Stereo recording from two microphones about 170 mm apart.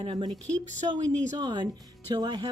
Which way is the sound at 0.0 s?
30° right (ahead or behind).